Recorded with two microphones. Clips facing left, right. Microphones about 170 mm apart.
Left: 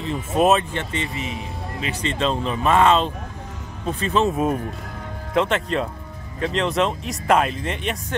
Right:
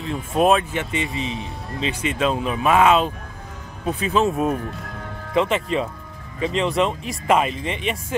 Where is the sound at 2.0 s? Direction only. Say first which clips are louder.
Even; 10° right (ahead or behind).